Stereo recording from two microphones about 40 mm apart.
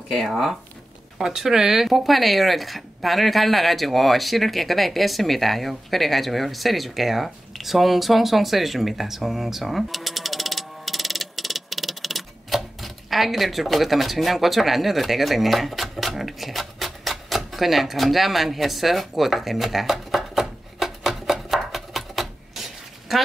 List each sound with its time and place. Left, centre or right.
0.2 s speech: centre
21.7 s typewriter: centre